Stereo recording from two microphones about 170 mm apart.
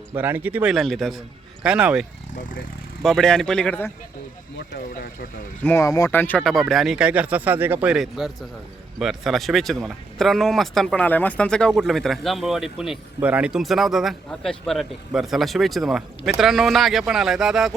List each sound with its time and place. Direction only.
0.1 s speech: 10° right (ahead or behind)
2.3 s speech: 50° left (ahead or behind)
3.0 s speech: centre (ahead or behind)
5.6 s speech: 15° left (ahead or behind); by 17.7 s centre (ahead or behind)